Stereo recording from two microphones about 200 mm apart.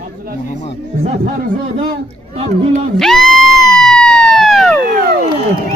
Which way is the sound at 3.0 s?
Centre (ahead or behind).